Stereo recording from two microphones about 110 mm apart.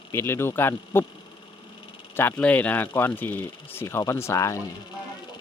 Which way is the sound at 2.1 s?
20° left (ahead or behind).